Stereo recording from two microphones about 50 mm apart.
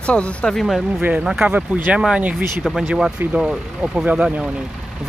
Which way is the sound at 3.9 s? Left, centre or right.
Centre.